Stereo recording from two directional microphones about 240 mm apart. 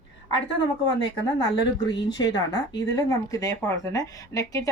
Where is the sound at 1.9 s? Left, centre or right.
Centre.